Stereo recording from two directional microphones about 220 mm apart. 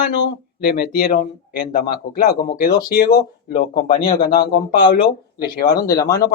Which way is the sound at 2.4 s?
40° left (ahead or behind).